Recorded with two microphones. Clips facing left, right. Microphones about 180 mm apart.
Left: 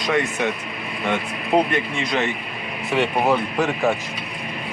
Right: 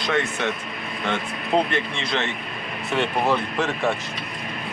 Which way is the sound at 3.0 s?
5° left (ahead or behind).